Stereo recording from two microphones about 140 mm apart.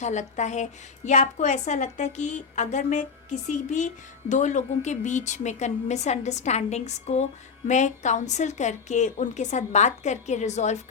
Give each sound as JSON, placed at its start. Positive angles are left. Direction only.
{"t": 0.0, "sound": "a woman's voice", "side_deg": 55}